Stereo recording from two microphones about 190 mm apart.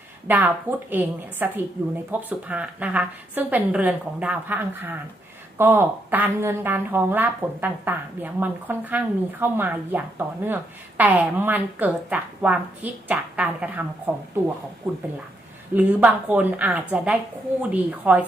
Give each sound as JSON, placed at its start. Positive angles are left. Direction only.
{"t": 0.3, "sound": "a woman's voice", "side_deg": -10}
{"t": 15.7, "sound": "a woman's voice", "side_deg": -10}